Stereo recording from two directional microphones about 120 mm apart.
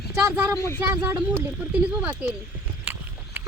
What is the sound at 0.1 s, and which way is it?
Speech, 15° right (ahead or behind).